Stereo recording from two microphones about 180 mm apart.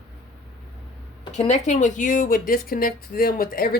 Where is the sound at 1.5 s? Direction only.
40° left (ahead or behind).